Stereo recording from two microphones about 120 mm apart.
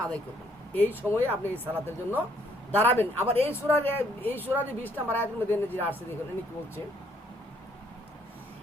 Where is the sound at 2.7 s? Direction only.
15° left (ahead or behind).